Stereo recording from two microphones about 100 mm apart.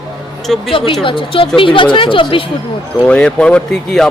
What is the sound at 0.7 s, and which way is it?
A woman's voice, 60° left (ahead or behind).